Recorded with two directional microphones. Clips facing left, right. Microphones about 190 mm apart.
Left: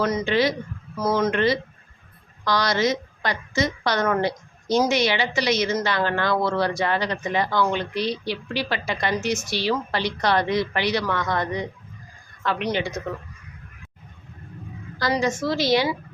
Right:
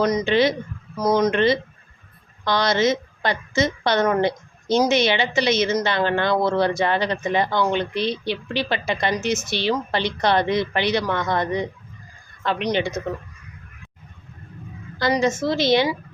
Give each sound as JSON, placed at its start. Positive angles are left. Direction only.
{"t": 0.0, "sound": "a woman's voice", "side_deg": -15}
{"t": 14.9, "sound": "a woman's voice", "side_deg": -25}